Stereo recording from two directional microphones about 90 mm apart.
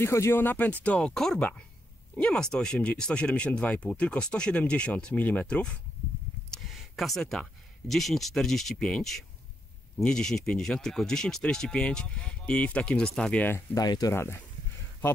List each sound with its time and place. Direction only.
0.0 s speech: 30° left (ahead or behind)
0.9 s speech: 5° left (ahead or behind)
6.5 s a sound: centre (ahead or behind)
7.9 s speech: centre (ahead or behind)
13.7 s speech: 45° left (ahead or behind)
14.1 s speech: 30° left (ahead or behind)